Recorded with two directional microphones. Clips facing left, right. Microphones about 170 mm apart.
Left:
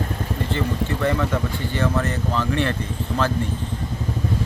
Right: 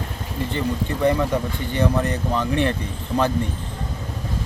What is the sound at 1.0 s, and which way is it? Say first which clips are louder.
Speech: right 4 dB; 15° right (ahead or behind).